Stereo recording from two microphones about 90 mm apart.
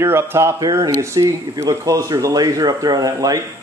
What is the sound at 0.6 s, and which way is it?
Speech, 40° right (ahead or behind).